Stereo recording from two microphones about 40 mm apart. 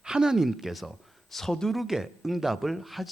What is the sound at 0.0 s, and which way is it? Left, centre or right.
Speech, centre.